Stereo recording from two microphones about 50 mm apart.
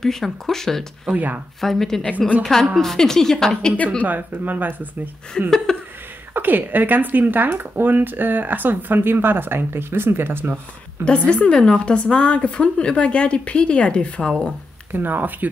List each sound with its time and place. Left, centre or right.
0.0 s a woman's voice: centre
1.1 s speech: right
1.6 s a woman's voice: centre
4.0 s speech: right
5.4 s a woman's voice: centre
6.3 s speech: right
11.1 s a woman's voice: left
14.9 s speech: right